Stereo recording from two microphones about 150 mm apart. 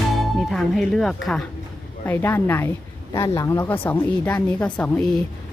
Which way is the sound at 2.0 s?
15° left (ahead or behind).